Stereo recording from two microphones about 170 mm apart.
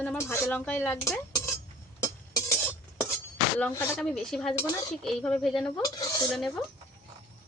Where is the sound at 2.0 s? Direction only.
20° left (ahead or behind).